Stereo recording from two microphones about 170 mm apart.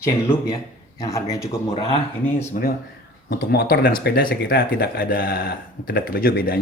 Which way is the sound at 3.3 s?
65° left (ahead or behind).